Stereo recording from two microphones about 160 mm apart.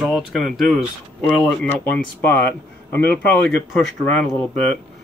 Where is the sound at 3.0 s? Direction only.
80° left.